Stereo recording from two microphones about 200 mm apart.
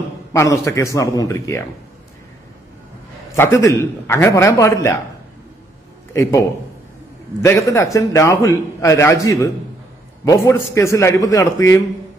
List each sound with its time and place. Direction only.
0.3 s a man's voice: 15° left (ahead or behind)
3.3 s a man's voice: 15° left (ahead or behind)
7.4 s a man's voice: 15° left (ahead or behind)